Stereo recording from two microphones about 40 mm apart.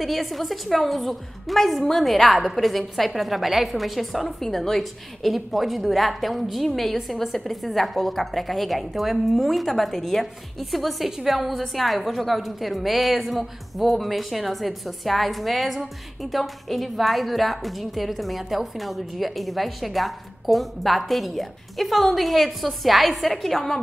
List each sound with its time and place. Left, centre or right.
0.0 s a woman's voice: centre